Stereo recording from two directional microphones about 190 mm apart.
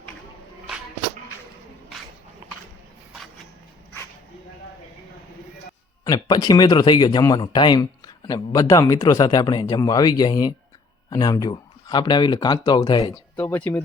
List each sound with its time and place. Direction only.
6.1 s speech: 20° left (ahead or behind)
13.3 s speech: 10° left (ahead or behind)